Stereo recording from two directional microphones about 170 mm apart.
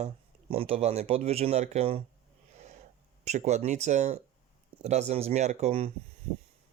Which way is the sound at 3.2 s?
40° right (ahead or behind).